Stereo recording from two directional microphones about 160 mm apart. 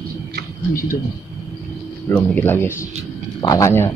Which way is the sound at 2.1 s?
10° left (ahead or behind).